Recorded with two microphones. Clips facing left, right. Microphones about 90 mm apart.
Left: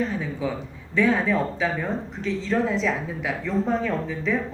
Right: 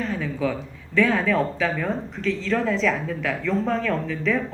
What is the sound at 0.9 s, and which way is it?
Speech, 15° left (ahead or behind).